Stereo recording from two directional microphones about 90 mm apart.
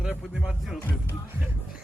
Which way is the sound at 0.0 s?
10° right (ahead or behind).